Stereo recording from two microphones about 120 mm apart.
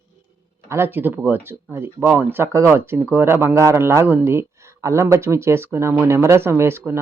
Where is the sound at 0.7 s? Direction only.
20° right (ahead or behind).